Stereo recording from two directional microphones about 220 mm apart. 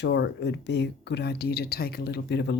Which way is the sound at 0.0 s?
50° left (ahead or behind).